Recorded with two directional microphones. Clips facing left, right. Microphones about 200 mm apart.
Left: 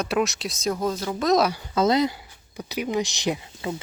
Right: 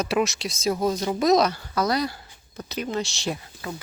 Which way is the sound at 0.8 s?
15° right (ahead or behind).